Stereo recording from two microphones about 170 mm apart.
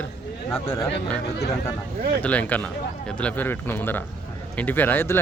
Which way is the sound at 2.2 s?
10° left (ahead or behind).